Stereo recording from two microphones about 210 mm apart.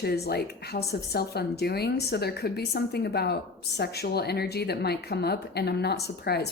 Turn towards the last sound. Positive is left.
turn(degrees=50)  # may be behind; listen again after turning